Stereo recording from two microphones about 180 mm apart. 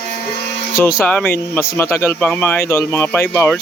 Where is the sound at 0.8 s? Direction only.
15° left (ahead or behind).